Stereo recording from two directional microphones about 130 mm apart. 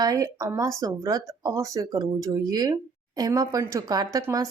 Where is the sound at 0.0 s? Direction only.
25° right (ahead or behind).